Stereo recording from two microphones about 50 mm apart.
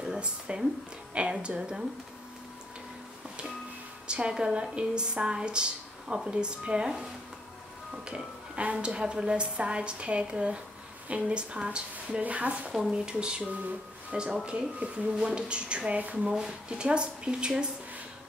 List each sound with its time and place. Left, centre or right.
0.1 s a woman's voice: centre
4.1 s a woman's voice: centre
8.5 s a woman's voice: right